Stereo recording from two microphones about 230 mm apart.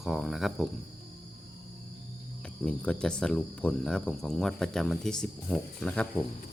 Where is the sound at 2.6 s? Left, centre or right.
Centre.